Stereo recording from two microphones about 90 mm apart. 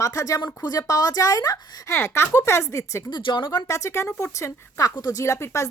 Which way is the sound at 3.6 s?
35° left (ahead or behind).